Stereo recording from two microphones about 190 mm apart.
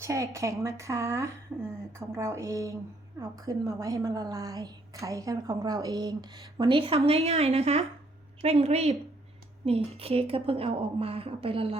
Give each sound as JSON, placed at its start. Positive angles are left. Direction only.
{"t": 0.0, "sound": "a woman's voice", "side_deg": -15}